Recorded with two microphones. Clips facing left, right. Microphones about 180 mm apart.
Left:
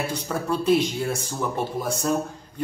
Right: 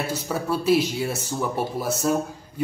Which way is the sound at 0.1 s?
5° right (ahead or behind).